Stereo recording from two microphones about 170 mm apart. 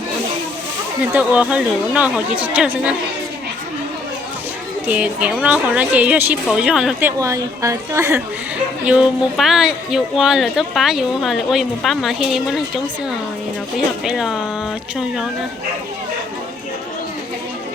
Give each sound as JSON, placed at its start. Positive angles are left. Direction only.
{"t": 1.1, "sound": "speech", "side_deg": -10}
{"t": 4.9, "sound": "speech", "side_deg": -10}
{"t": 7.2, "sound": "speech", "side_deg": -20}
{"t": 8.8, "sound": "speech", "side_deg": -5}